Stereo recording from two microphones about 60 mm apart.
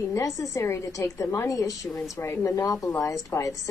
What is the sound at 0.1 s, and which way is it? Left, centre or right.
A woman's voice, left.